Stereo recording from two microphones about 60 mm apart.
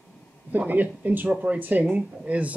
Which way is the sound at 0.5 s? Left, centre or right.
Right.